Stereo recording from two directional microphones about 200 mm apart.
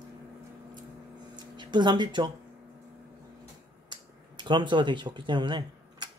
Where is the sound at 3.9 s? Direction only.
20° right (ahead or behind).